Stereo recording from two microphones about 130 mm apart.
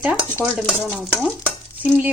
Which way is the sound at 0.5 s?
Centre (ahead or behind).